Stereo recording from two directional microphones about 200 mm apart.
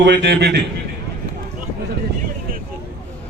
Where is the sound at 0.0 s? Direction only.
60° right (ahead or behind).